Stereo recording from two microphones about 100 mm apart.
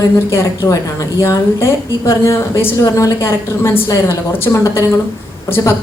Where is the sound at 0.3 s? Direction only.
30° left (ahead or behind).